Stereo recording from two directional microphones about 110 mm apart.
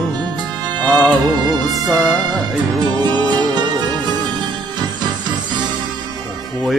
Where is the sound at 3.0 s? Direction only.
40° right (ahead or behind).